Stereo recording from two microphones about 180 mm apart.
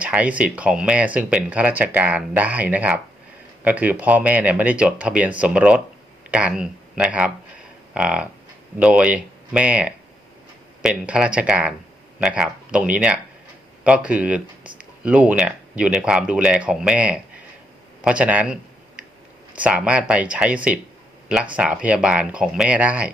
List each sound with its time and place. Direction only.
0.0 s speech: 5° right (ahead or behind)
18.0 s a sound: 5° right (ahead or behind)
19.5 s speech: 5° right (ahead or behind)